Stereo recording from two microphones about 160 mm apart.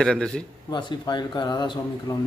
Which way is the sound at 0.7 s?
30° left (ahead or behind).